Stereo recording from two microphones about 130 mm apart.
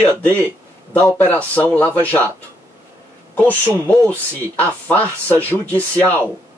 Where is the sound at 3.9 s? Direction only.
10° left (ahead or behind).